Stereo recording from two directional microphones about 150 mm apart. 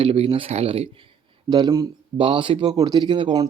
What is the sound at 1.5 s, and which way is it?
Speech, 25° right (ahead or behind).